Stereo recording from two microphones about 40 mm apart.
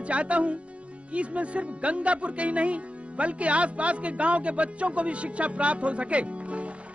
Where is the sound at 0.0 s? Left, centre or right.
Right.